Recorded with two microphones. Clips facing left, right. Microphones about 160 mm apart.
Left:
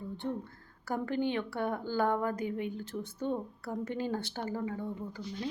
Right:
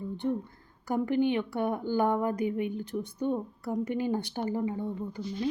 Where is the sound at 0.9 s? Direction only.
15° right (ahead or behind).